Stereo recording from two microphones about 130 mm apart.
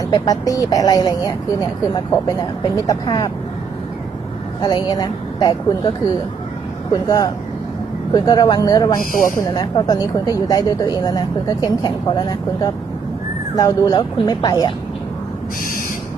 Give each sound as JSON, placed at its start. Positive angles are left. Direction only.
{"t": 0.0, "sound": "speech", "side_deg": 30}
{"t": 4.6, "sound": "a woman's voice", "side_deg": 30}
{"t": 6.9, "sound": "speech", "side_deg": 30}
{"t": 9.0, "sound": "speech", "side_deg": 90}
{"t": 9.5, "sound": "a woman's voice", "side_deg": 35}